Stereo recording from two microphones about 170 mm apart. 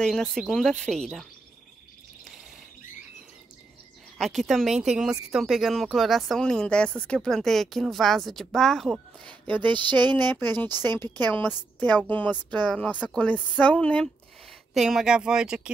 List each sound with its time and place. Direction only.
0.0 s speech: 5° left (ahead or behind)
4.2 s speech: centre (ahead or behind)
9.6 s a sound: 30° right (ahead or behind)
10.1 s a woman's voice: 10° left (ahead or behind); by 15.7 s 5° right (ahead or behind)